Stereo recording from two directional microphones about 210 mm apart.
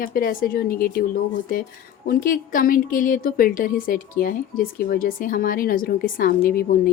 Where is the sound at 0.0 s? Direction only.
45° left (ahead or behind).